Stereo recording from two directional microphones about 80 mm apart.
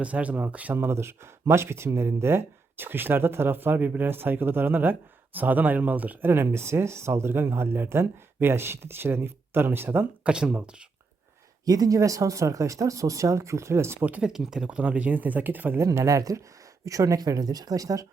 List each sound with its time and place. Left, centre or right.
0.0 s speech: centre
10.2 s speech: centre
11.6 s speech: right
14.0 s speech: centre
14.3 s speech: centre; by 15.8 s right
15.8 s speech: right